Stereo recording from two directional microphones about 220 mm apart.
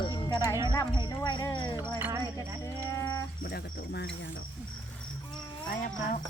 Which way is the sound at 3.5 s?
45° left (ahead or behind).